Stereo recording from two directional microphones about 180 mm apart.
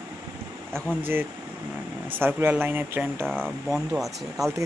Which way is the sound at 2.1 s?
10° right (ahead or behind).